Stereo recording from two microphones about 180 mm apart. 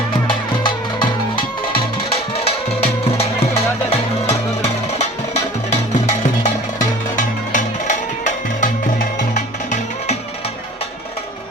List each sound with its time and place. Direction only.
0.3 s music: 25° left (ahead or behind)
7.2 s music: 45° left (ahead or behind)